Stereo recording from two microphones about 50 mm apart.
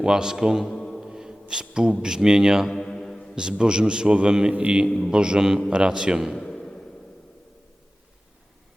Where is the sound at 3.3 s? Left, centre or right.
Centre.